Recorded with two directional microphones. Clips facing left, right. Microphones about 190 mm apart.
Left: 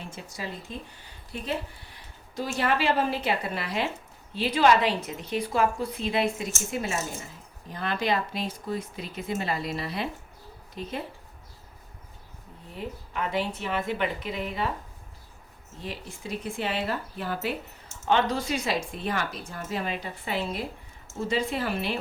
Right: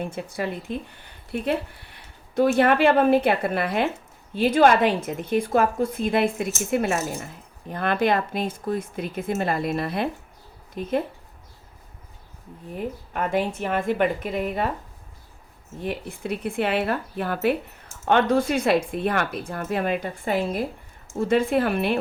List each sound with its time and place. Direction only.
0.0 s speech: 55° right (ahead or behind)
12.7 s speech: 50° right (ahead or behind)
15.8 s speech: 55° right (ahead or behind)